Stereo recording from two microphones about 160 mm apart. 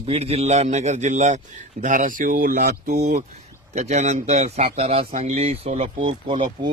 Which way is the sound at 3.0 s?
50° right (ahead or behind).